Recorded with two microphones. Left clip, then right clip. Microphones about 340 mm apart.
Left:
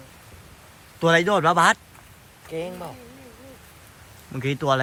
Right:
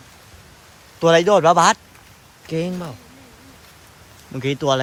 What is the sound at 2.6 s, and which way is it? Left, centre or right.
Speech, right.